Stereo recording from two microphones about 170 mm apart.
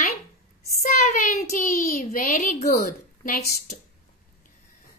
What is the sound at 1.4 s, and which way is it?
A child's voice, 55° left (ahead or behind).